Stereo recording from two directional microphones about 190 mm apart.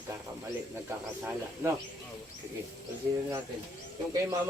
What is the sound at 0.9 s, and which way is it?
Speech, 15° right (ahead or behind).